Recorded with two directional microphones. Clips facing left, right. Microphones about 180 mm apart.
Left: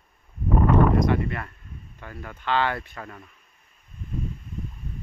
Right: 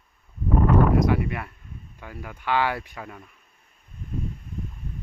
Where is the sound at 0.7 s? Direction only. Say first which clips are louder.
Even; 5° right (ahead or behind).